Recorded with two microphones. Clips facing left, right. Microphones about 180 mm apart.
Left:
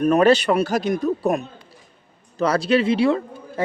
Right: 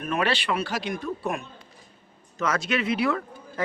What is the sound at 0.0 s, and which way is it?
A man's voice, 40° left (ahead or behind).